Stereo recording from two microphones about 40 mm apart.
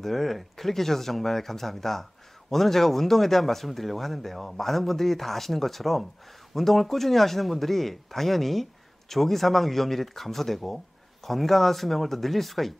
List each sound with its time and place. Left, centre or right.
0.0 s speech: centre